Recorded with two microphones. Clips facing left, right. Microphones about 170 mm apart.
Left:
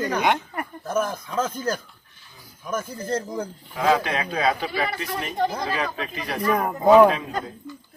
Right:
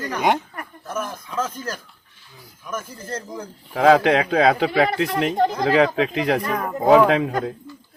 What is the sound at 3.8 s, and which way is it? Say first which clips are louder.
Speech: right 7 dB; 90° right.